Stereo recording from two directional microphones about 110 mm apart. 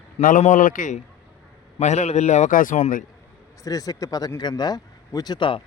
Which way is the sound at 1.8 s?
90° left.